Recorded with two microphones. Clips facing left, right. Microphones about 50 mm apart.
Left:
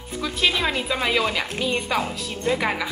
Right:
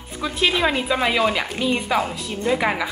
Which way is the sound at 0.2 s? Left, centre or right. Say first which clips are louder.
Right 3 dB; centre.